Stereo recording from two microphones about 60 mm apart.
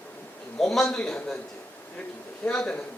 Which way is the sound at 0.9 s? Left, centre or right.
Centre.